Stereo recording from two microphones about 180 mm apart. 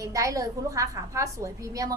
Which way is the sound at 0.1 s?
20° right (ahead or behind).